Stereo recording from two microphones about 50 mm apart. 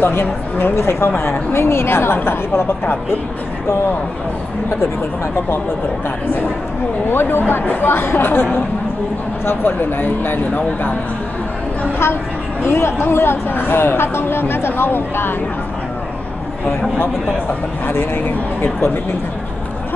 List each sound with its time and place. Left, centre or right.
0.0 s speech: left
0.7 s speech: left
7.1 s speech: left
9.5 s speech: left
12.6 s speech: left
17.8 s speech: left